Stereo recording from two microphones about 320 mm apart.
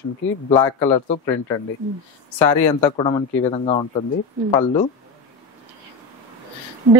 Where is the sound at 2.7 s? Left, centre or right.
Centre.